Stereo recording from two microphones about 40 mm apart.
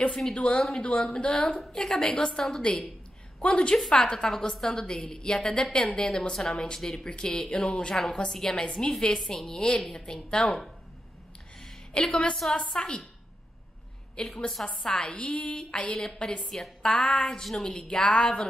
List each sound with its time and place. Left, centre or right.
0.4 s a woman's voice: left
3.3 s a woman's voice: left
7.9 s a woman's voice: centre
11.9 s a woman's voice: left
14.2 s a woman's voice: left